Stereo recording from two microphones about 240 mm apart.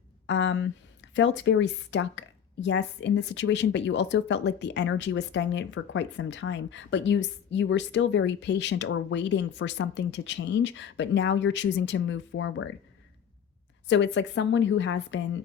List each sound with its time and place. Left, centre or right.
0.3 s speech: left
13.8 s speech: left